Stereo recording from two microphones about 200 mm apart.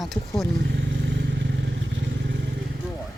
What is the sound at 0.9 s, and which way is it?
Vehicle, 65° right (ahead or behind).